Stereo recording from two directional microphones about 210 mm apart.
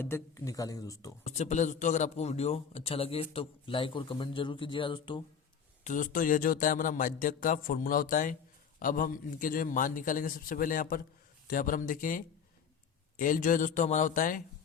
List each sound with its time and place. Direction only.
0.0 s speech: 15° left (ahead or behind)
1.2 s a man's voice: 30° left (ahead or behind)
5.8 s speech: 40° left (ahead or behind)